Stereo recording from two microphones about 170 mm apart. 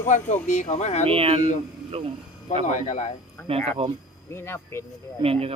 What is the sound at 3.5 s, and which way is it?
Speech, 35° right (ahead or behind).